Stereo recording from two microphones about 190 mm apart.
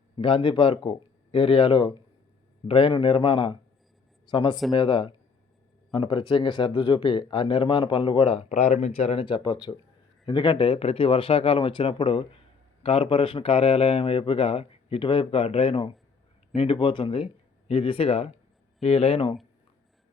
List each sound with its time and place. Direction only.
0.2 s speech: 25° left (ahead or behind)